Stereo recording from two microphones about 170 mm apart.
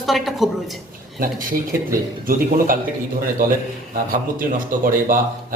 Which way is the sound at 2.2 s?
55° right (ahead or behind).